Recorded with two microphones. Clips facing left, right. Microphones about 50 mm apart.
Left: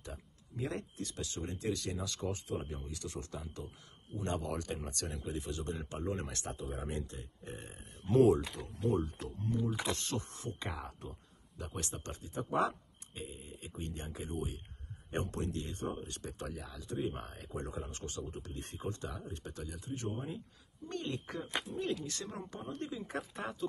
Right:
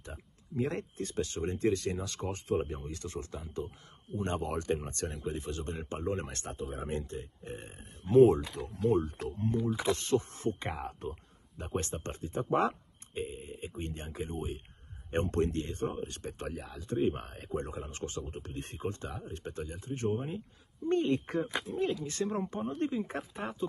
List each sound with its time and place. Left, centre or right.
0.6 s speech: right
3.4 s speech: centre
4.2 s speech: right
8.8 s speech: right
15.3 s speech: right
21.7 s speech: right
23.3 s speech: right